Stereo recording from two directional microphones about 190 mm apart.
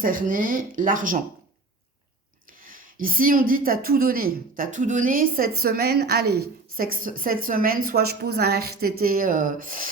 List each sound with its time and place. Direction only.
0.0 s speech: 45° right (ahead or behind)
2.5 s speech: 45° right (ahead or behind)